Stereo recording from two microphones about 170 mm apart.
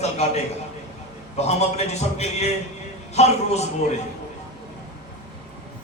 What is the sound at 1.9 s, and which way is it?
Speech, 40° left (ahead or behind).